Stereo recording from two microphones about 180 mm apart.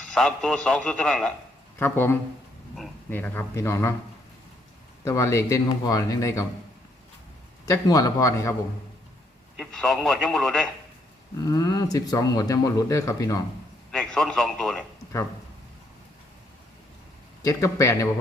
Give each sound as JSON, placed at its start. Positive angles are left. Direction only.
{"t": 0.1, "sound": "a man's voice", "side_deg": 5}
{"t": 5.0, "sound": "speech", "side_deg": 15}
{"t": 7.6, "sound": "speech", "side_deg": 20}
{"t": 9.6, "sound": "a man's voice", "side_deg": 5}
{"t": 11.4, "sound": "speech", "side_deg": 20}
{"t": 13.9, "sound": "a man's voice", "side_deg": 5}
{"t": 17.4, "sound": "speech", "side_deg": 20}